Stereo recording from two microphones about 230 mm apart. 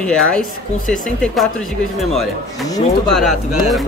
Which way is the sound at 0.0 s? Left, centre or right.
Centre.